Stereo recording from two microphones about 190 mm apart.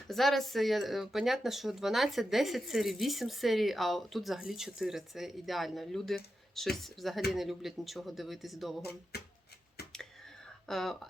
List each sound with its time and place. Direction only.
0.1 s speech: centre (ahead or behind)
9.1 s speech: 55° left (ahead or behind)
10.7 s speech: centre (ahead or behind)